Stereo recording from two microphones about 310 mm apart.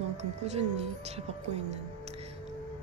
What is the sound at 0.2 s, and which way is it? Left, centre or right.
Speech, right.